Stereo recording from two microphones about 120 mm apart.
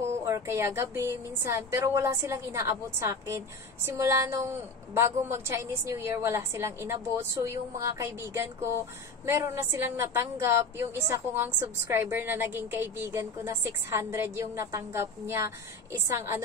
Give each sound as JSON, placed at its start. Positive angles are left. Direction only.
{"t": 0.2, "sound": "a woman's voice", "side_deg": -25}